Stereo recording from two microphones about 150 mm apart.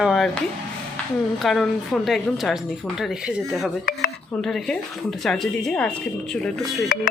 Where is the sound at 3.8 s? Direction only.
85° left.